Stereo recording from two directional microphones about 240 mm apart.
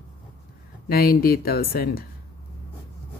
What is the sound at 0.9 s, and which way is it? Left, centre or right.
A woman's voice, left.